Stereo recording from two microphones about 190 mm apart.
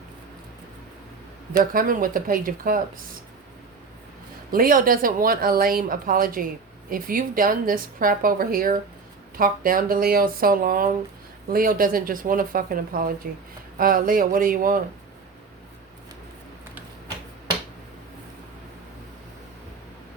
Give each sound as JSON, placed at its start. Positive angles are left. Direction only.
{"t": 1.7, "sound": "speech", "side_deg": -45}
{"t": 4.5, "sound": "speech", "side_deg": -45}